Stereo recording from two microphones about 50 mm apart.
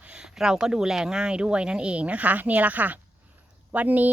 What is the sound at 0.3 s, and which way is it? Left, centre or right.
Speech, centre.